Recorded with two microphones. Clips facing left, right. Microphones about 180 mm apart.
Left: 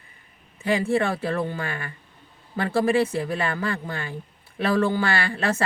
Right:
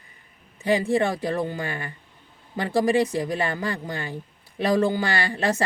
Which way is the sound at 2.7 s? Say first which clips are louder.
Right 1 dB; 15° right (ahead or behind).